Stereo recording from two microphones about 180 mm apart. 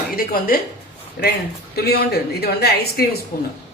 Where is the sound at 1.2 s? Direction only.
60° left (ahead or behind).